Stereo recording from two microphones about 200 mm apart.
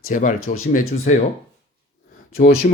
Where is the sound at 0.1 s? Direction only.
40° left (ahead or behind).